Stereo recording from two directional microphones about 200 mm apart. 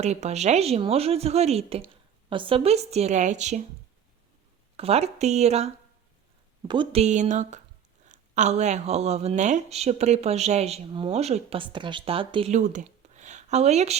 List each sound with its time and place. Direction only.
0.0 s speech: 35° right (ahead or behind)
4.8 s speech: 30° right (ahead or behind)